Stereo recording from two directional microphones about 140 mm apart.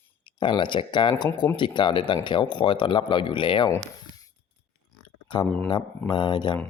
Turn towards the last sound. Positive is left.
turn(degrees=30)  # may be behind; listen again after turning